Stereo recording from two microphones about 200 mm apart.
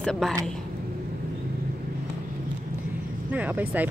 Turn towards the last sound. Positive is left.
turn(degrees=-10)  # may be behind; listen again after turning